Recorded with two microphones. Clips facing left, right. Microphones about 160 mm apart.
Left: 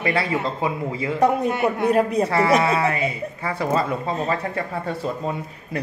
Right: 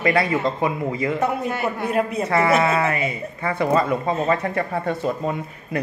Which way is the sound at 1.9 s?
35° left (ahead or behind).